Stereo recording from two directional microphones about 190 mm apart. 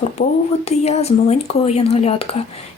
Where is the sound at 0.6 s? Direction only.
35° left (ahead or behind).